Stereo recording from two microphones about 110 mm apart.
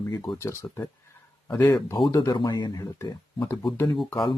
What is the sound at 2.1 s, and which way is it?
Speech, 35° left (ahead or behind).